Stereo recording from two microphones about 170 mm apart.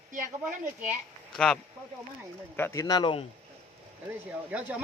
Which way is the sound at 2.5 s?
15° left (ahead or behind).